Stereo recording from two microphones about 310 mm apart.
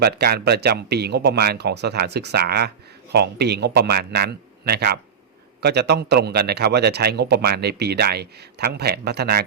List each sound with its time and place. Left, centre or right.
0.0 s speech: right